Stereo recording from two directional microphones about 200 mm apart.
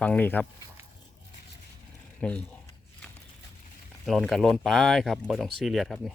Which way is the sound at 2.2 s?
5° left (ahead or behind).